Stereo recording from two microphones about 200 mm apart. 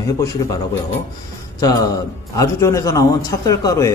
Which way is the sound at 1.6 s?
20° left (ahead or behind).